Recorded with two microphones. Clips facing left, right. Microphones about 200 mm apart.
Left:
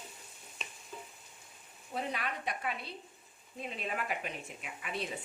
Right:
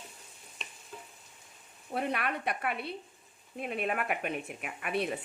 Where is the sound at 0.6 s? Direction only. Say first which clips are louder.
Even; centre (ahead or behind).